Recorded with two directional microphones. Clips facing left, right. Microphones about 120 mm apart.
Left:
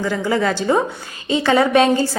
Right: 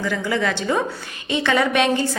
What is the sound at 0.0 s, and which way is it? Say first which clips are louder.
A woman's voice: left 3 dB; 35° left (ahead or behind).